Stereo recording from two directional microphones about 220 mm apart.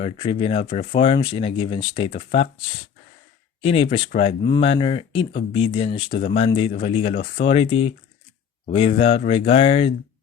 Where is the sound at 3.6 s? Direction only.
25° left (ahead or behind).